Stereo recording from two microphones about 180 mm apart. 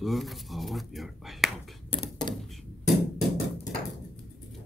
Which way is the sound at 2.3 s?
Centre (ahead or behind).